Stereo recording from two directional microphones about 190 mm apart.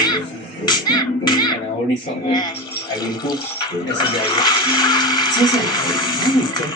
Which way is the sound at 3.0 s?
20° left (ahead or behind).